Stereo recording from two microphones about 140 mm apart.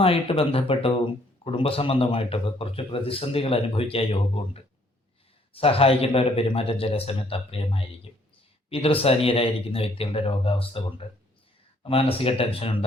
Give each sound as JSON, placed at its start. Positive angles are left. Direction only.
{"t": 0.0, "sound": "speech", "side_deg": 40}